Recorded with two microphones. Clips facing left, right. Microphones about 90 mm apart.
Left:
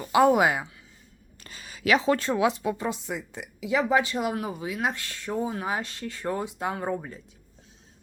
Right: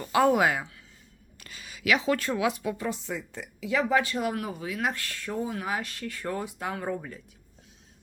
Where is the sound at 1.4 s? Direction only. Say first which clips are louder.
Left 3 dB; 35° left (ahead or behind).